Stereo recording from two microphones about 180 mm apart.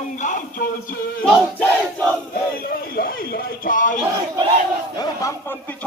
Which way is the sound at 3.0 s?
55° left (ahead or behind).